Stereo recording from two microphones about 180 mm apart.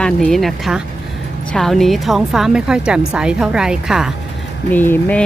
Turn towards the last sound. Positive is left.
turn(degrees=10)  # may be behind; listen again after turning